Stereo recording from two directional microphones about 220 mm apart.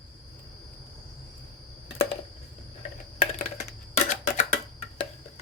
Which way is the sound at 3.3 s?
35° left (ahead or behind).